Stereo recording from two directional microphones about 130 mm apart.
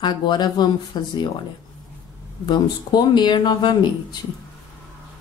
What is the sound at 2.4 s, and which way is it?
A woman's voice, 35° left (ahead or behind).